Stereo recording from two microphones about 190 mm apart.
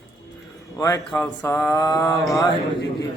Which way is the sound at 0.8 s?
20° left (ahead or behind).